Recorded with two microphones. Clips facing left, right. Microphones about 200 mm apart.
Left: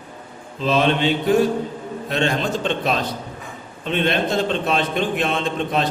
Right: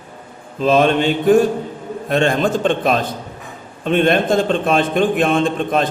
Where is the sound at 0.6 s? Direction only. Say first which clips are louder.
Right 4 dB; 50° right (ahead or behind).